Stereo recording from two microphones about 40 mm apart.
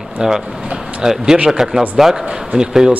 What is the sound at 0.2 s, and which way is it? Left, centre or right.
A man's voice, centre.